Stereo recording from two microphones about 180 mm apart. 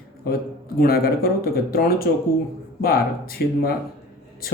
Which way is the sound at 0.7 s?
55° left (ahead or behind).